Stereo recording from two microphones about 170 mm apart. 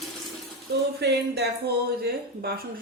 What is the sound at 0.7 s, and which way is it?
Speech, 75° right (ahead or behind).